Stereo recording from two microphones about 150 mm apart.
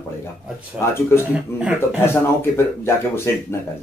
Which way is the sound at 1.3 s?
5° right (ahead or behind).